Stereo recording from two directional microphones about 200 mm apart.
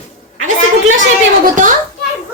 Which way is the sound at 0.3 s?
90° right.